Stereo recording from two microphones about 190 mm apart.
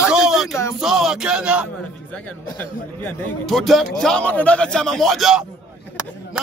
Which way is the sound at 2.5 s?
10° left (ahead or behind).